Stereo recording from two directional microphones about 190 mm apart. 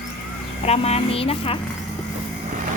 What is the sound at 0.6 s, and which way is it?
Speech, 35° left (ahead or behind).